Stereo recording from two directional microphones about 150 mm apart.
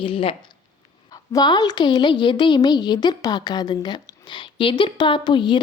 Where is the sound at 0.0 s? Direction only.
35° left (ahead or behind).